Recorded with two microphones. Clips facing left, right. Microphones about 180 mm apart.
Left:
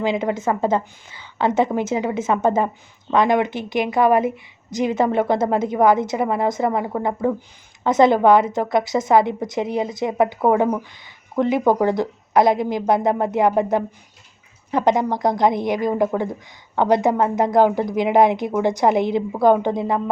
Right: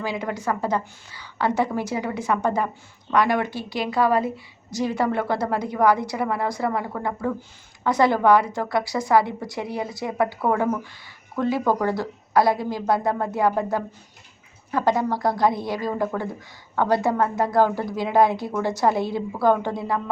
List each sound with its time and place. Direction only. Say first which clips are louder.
0.0 s a woman's voice: left 6 dB; 20° left (ahead or behind)